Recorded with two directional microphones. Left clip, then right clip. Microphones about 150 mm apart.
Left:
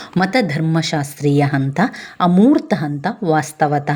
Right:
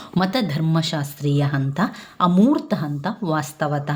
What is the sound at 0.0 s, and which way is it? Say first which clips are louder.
A woman's voice: left 6 dB; 25° left (ahead or behind).